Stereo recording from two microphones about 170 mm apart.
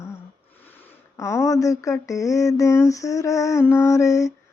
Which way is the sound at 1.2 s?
15° left (ahead or behind).